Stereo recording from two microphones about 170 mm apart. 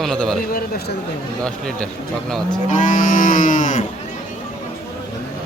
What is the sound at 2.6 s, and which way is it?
Cattle, 50° left (ahead or behind).